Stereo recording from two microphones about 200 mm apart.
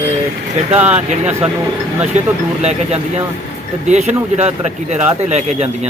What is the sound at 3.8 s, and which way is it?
A man's voice, 35° right (ahead or behind).